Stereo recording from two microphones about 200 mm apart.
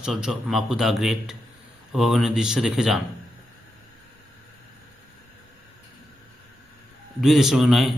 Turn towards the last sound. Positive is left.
turn(degrees=0)  # may be behind; listen again after turning